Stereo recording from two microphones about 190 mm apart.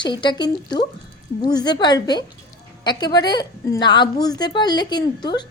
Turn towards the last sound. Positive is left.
turn(degrees=20)  # may be behind; listen again after turning